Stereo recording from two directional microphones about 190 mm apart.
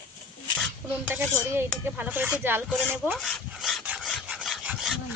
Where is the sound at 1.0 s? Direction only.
10° right (ahead or behind).